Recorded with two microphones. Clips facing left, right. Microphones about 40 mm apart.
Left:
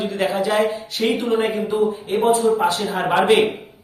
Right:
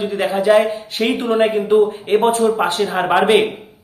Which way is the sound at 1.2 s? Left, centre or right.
Right.